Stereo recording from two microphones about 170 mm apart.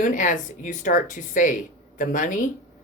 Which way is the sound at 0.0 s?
50° left (ahead or behind).